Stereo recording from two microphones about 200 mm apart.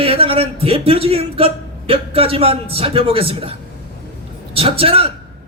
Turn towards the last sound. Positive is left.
turn(degrees=-30)  # may be behind; listen again after turning